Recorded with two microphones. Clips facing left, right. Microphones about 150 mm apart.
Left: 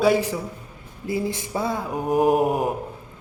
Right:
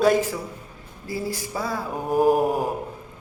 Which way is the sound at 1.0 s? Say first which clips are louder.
Left 3 dB; 20° left (ahead or behind).